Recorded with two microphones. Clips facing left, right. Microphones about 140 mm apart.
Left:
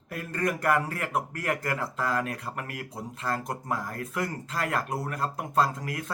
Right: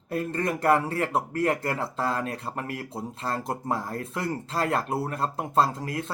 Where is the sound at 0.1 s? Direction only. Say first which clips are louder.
Right 3 dB; 25° right (ahead or behind).